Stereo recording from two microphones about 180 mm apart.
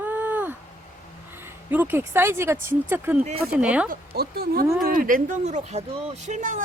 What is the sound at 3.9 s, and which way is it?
Speech, 60° right (ahead or behind).